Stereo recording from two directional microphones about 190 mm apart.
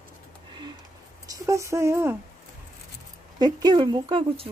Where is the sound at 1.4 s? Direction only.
15° right (ahead or behind).